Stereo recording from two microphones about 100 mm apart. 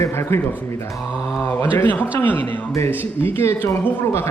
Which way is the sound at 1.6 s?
25° left (ahead or behind).